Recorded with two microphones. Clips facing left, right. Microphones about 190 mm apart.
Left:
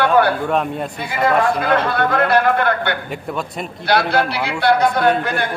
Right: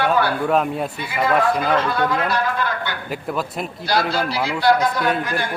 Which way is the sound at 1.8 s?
60° left (ahead or behind).